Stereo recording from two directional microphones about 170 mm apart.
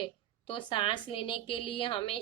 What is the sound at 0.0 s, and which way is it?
Speech, 30° left (ahead or behind).